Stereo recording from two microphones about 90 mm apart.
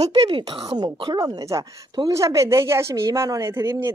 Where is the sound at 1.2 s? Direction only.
35° right (ahead or behind).